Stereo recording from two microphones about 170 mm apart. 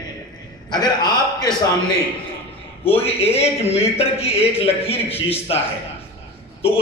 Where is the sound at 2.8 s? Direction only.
35° left (ahead or behind).